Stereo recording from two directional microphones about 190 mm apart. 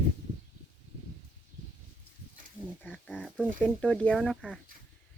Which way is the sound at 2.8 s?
10° left (ahead or behind).